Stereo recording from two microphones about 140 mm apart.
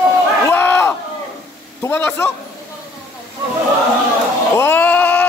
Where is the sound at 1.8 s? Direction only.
15° left (ahead or behind).